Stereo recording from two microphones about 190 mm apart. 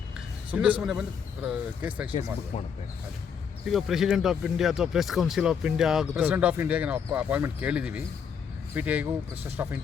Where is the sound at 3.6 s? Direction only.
Centre (ahead or behind).